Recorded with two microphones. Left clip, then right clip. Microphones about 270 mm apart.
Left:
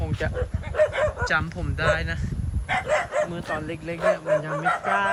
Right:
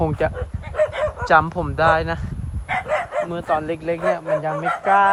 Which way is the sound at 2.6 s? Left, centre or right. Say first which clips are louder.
Right 2 dB; right.